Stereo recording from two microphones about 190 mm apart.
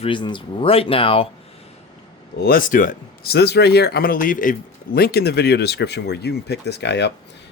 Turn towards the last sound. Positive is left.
turn(degrees=65)  # may be behind; listen again after turning